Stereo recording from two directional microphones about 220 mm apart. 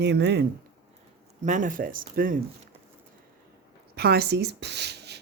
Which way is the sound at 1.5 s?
35° right (ahead or behind).